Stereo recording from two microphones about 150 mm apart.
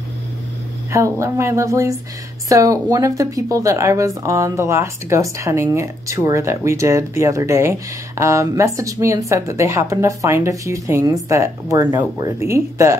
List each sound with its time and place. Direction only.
0.9 s speech: 20° right (ahead or behind)